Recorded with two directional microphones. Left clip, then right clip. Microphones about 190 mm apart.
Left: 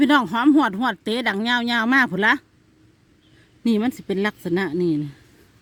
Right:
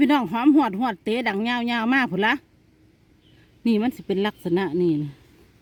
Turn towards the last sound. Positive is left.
turn(degrees=20)  # may be behind; listen again after turning